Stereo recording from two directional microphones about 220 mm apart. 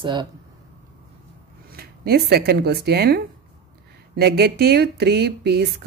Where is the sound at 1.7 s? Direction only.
45° right (ahead or behind).